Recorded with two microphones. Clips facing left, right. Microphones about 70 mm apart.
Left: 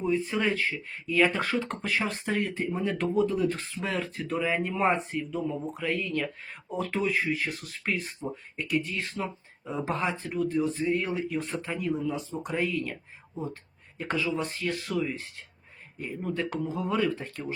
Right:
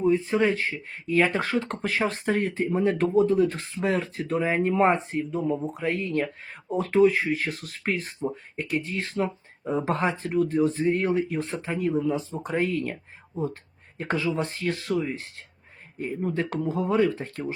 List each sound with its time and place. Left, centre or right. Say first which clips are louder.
0.0 s speech: right 5 dB; right
1.7 s speech: right 3 dB; right
14.0 s speech: right 3 dB; right